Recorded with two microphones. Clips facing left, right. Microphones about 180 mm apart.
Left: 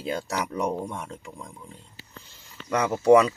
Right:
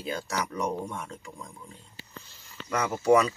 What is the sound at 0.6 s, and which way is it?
Speech, 5° left (ahead or behind).